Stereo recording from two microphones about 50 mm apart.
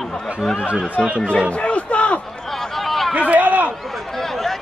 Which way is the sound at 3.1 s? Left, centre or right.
Right.